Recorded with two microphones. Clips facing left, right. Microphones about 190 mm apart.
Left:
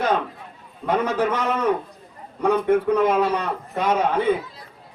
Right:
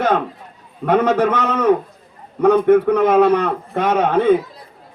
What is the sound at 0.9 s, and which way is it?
Speech, 60° right (ahead or behind).